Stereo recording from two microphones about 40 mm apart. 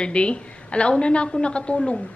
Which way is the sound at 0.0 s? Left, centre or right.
Left.